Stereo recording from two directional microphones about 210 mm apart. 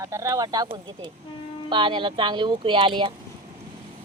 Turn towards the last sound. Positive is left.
turn(degrees=-25)  # may be behind; listen again after turning